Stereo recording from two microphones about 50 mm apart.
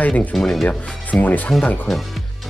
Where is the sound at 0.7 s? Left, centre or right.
Left.